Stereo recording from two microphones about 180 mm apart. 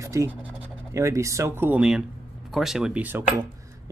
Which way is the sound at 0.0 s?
15° right (ahead or behind).